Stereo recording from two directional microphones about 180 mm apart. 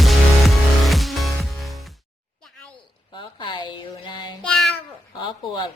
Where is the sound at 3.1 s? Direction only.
25° left (ahead or behind).